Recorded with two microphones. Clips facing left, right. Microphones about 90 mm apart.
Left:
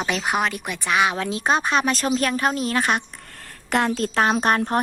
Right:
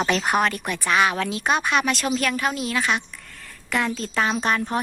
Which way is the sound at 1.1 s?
30° left (ahead or behind).